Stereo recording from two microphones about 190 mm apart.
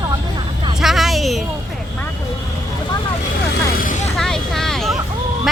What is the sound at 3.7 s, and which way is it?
Vehicle, 45° left (ahead or behind).